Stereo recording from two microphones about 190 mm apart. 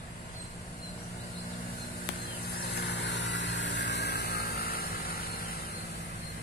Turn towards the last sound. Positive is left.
turn(degrees=50)  # may be behind; listen again after turning